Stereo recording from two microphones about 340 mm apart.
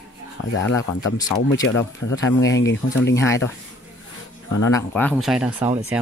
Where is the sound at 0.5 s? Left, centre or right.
Left.